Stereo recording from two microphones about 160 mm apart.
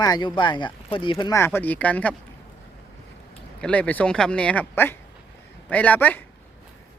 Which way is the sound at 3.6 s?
10° left (ahead or behind).